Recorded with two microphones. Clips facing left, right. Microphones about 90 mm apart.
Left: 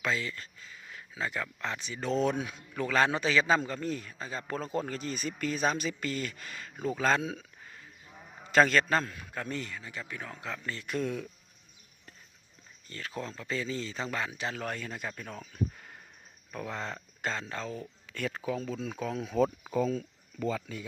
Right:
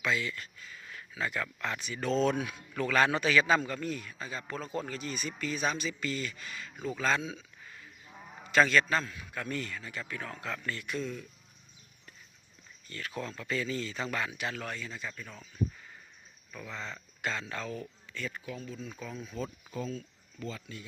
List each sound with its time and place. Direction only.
0.0 s speech: 35° left (ahead or behind)
0.7 s speech: 20° left (ahead or behind); by 7.4 s 50° left (ahead or behind)
8.5 s speech: 40° left (ahead or behind)
9.3 s speech: 30° left (ahead or behind)
10.8 s speech: 50° left (ahead or behind)
12.9 s speech: 30° left (ahead or behind)
14.8 s speech: 50° left (ahead or behind)
17.3 s speech: 30° left (ahead or behind)
18.1 s speech: 70° left (ahead or behind); by 19.7 s 90° left